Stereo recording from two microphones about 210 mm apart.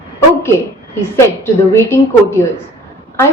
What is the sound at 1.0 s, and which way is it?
Speech, 10° left (ahead or behind).